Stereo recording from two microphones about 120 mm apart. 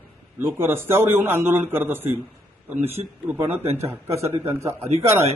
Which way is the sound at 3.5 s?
60° right (ahead or behind).